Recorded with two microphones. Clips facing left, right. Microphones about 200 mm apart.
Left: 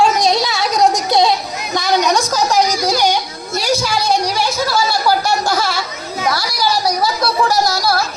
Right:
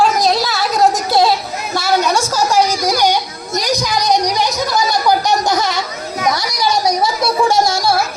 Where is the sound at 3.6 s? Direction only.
15° right (ahead or behind).